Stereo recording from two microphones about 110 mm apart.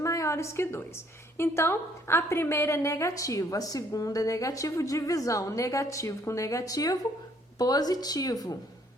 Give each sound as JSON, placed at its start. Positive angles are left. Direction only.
{"t": 0.0, "sound": "a woman's voice", "side_deg": 30}